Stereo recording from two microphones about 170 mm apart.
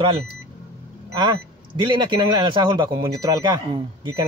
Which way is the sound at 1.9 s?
25° right (ahead or behind).